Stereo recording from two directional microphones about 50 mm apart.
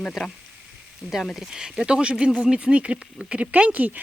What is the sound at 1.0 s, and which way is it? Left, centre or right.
Speech, right.